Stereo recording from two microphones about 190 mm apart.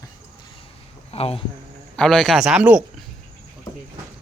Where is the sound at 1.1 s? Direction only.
30° left (ahead or behind).